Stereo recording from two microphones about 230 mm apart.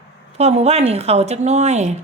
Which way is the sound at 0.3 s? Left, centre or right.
Right.